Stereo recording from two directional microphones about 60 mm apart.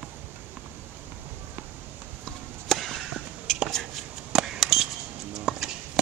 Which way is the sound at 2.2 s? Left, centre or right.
Centre.